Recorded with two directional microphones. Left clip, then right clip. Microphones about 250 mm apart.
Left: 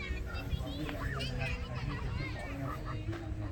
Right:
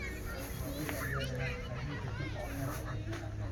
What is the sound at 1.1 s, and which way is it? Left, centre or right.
Music, left.